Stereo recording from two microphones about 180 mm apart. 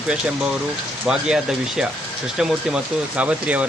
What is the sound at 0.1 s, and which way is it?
Speech, 5° right (ahead or behind).